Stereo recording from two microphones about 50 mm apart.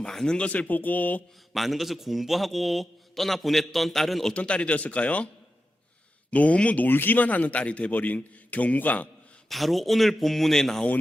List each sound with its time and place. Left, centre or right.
0.0 s speech: centre
0.3 s a man's voice: left
1.5 s a man's voice: centre
4.4 s speech: left
6.3 s speech: left
6.8 s a man's voice: left
9.5 s a man's voice: centre